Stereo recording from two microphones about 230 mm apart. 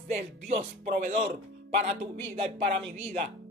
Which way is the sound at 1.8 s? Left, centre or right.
Right.